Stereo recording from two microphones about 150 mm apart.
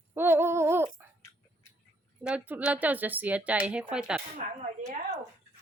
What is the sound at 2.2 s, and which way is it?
A woman's voice, 10° right (ahead or behind).